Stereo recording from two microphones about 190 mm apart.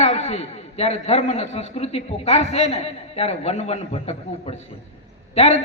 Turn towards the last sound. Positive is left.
turn(degrees=35)  # may be behind; listen again after turning